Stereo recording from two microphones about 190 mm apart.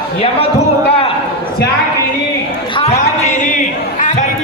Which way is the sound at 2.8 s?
35° left (ahead or behind).